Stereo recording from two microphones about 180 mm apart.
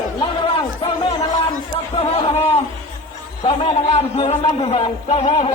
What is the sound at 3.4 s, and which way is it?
A man's voice, 35° left (ahead or behind).